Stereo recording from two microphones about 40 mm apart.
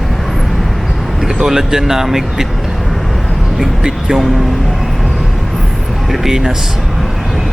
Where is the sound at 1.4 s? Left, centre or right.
Centre.